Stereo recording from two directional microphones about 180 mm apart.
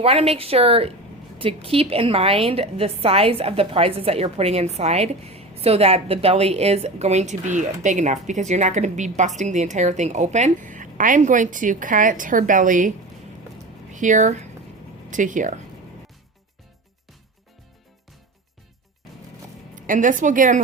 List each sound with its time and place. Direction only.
0.0 s a woman's voice: 35° right (ahead or behind)
13.9 s speech: 45° right (ahead or behind)
19.7 s a woman's voice: 45° right (ahead or behind)